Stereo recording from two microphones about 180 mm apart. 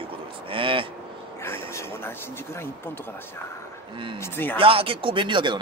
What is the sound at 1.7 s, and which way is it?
Speech, 15° left (ahead or behind).